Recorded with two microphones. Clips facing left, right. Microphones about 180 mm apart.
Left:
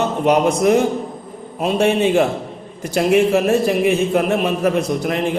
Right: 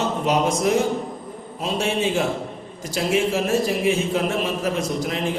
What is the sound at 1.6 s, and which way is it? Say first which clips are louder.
A man's voice: left 7 dB; 60° left (ahead or behind).